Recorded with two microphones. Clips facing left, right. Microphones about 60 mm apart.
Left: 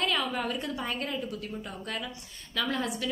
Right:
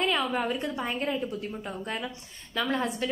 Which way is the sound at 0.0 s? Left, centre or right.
Right.